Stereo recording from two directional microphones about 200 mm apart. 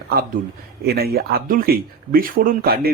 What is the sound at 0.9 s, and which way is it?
Speech, 50° right (ahead or behind).